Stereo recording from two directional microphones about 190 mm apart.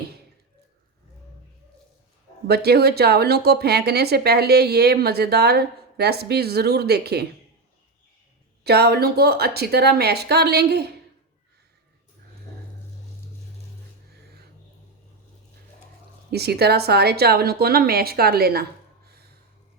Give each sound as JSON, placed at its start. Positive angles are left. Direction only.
{"t": 2.5, "sound": "speech", "side_deg": -55}
{"t": 8.6, "sound": "speech", "side_deg": -60}
{"t": 16.3, "sound": "speech", "side_deg": -55}
{"t": 19.0, "sound": "a sound", "side_deg": -55}